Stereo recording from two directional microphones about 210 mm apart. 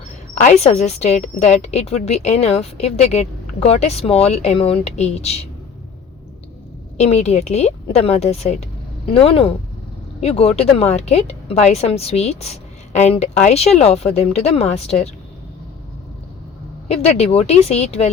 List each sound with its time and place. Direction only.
0.3 s a woman's voice: 30° left (ahead or behind)
6.9 s a woman's voice: 30° left (ahead or behind)
16.9 s speech: 30° left (ahead or behind)